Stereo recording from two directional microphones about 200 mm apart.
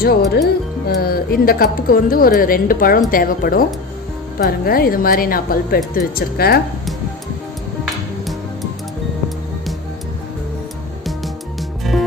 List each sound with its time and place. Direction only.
0.0 s speech: 50° left (ahead or behind)